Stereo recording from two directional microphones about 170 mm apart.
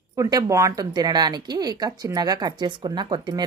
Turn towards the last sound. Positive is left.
turn(degrees=-25)  # may be behind; listen again after turning